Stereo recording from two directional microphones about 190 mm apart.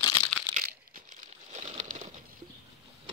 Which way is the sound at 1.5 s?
40° right (ahead or behind).